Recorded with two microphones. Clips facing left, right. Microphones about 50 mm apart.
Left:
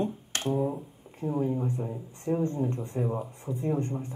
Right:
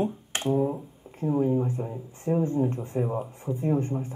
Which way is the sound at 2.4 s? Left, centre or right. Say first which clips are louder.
Right 3 dB; right.